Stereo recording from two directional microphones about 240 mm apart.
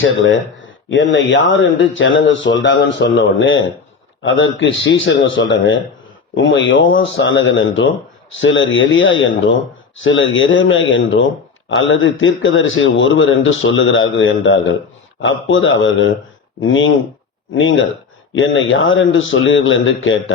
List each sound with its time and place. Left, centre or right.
0.0 s speech: left